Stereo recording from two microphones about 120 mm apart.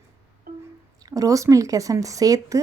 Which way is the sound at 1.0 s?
30° right (ahead or behind).